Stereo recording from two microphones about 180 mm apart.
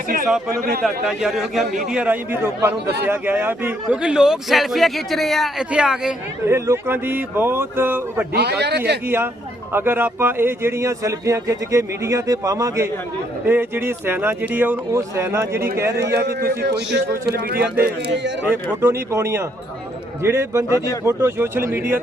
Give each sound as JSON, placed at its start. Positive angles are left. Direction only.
{"t": 0.8, "sound": "a man's voice", "side_deg": 0}
{"t": 8.3, "sound": "a man's voice", "side_deg": -65}
{"t": 9.0, "sound": "speech", "side_deg": -10}
{"t": 16.2, "sound": "a man's voice", "side_deg": -65}
{"t": 18.4, "sound": "speech", "side_deg": -15}